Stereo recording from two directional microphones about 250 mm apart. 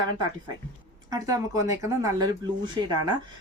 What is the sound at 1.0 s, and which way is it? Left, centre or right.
Speech, centre.